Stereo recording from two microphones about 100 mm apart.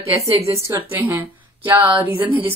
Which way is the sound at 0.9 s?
20° right (ahead or behind).